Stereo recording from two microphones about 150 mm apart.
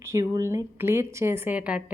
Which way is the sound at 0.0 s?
20° right (ahead or behind).